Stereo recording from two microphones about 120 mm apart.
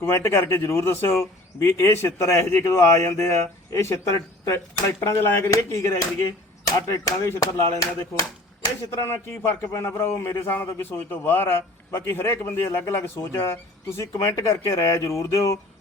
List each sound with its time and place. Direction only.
0.0 s a man's voice: 20° left (ahead or behind)